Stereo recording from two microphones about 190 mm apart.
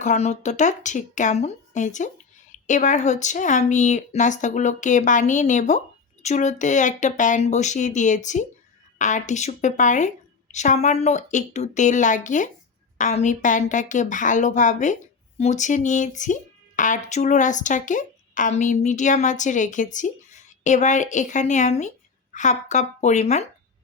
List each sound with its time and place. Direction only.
0.0 s speech: 35° left (ahead or behind)